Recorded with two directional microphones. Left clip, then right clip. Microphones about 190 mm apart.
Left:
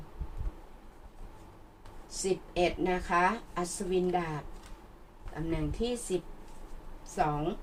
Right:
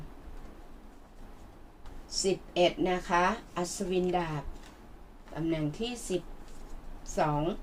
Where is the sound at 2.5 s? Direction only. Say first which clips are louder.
Right 3 dB; 35° right (ahead or behind).